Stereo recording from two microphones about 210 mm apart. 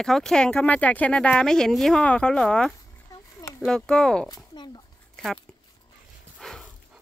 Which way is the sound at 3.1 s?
15° left (ahead or behind).